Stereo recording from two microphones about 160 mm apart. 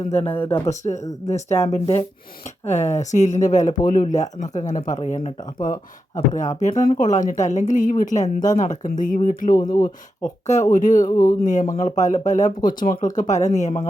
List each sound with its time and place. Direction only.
0.1 s a woman's voice: 40° left (ahead or behind)
5.6 s speech: 25° left (ahead or behind)
6.6 s a woman's voice: 45° left (ahead or behind)
9.6 s speech: 25° left (ahead or behind)
10.4 s a woman's voice: 50° left (ahead or behind)
11.0 s speech: 25° left (ahead or behind)
11.3 s a woman's voice: 50° left (ahead or behind)